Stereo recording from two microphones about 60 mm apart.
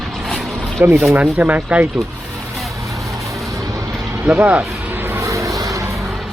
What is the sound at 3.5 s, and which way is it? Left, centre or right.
Vehicle, right.